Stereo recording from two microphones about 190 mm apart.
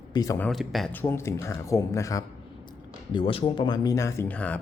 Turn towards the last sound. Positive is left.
turn(degrees=10)  # may be behind; listen again after turning